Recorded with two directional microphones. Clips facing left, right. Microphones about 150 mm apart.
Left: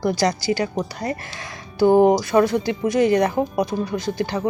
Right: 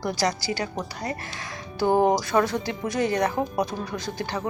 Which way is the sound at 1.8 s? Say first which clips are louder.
Left 6 dB; 15° left (ahead or behind).